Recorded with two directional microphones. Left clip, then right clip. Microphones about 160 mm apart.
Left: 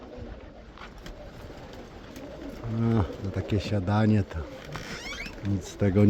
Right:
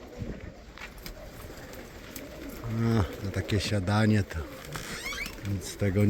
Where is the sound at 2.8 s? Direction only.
10° left (ahead or behind).